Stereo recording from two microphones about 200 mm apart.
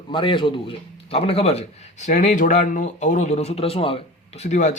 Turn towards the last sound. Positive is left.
turn(degrees=35)  # may be behind; listen again after turning